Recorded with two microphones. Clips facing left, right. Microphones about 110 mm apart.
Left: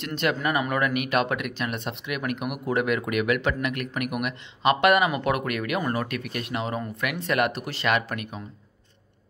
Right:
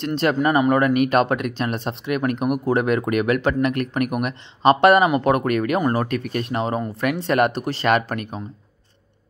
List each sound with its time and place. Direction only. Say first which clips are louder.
0.0 s speech: right 6 dB; 35° right (ahead or behind)